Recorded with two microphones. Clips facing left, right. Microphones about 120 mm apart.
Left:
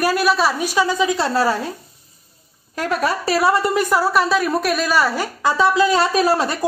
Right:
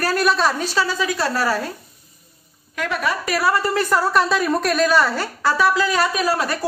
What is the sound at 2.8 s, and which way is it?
A woman's voice, 35° left (ahead or behind).